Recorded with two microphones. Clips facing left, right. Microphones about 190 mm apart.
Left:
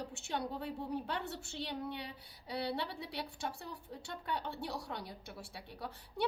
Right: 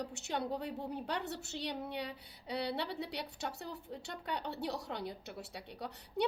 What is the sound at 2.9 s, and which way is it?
A woman's voice, 20° right (ahead or behind).